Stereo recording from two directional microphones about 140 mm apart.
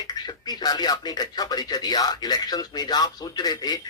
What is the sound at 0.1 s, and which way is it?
Speech, 30° left (ahead or behind).